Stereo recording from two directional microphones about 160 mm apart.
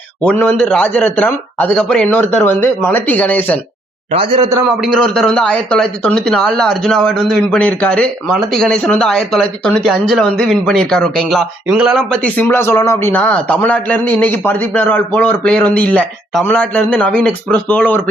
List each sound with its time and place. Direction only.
0.3 s speech: 5° left (ahead or behind)
4.1 s a man's voice: 35° right (ahead or behind)
4.8 s a man's voice: centre (ahead or behind)